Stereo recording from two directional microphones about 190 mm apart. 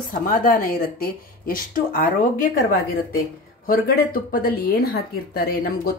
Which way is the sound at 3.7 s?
50° left (ahead or behind).